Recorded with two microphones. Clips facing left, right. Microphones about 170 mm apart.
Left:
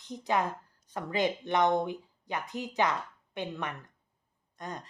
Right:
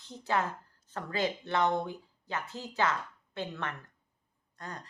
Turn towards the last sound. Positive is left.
turn(degrees=20)  # may be behind; listen again after turning